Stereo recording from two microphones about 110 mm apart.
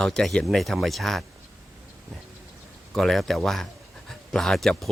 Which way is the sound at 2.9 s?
Centre (ahead or behind).